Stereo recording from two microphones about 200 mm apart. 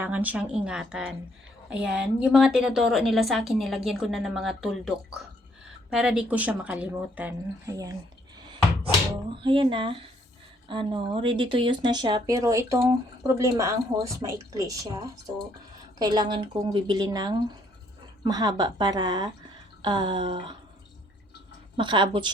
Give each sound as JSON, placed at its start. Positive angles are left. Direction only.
{"t": 0.0, "sound": "a woman's voice", "side_deg": -10}
{"t": 9.3, "sound": "speech", "side_deg": -25}
{"t": 21.8, "sound": "speech", "side_deg": -25}